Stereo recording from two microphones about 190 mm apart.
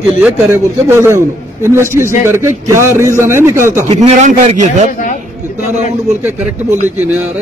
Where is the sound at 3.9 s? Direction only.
35° right (ahead or behind).